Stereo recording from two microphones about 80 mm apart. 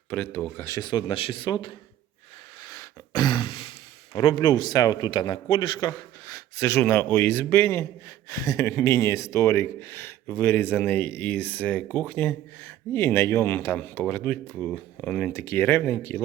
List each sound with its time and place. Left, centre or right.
0.1 s speech: left
0.6 s speech: left
0.9 s a man's voice: left
2.6 s a sound: left
4.2 s a man's voice: left
6.2 s speech: left
8.3 s speech: left; by 15.3 s centre
15.3 s speech: left